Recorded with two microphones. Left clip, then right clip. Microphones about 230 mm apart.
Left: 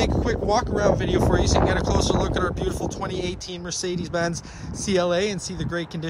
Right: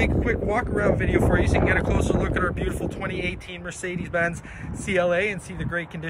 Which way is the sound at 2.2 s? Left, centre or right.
Centre.